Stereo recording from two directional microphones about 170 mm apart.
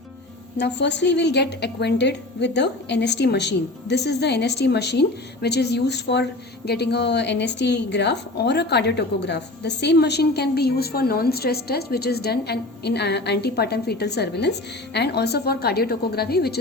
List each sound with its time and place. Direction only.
0.5 s a woman's voice: 90° left; by 16.6 s 70° left (ahead or behind)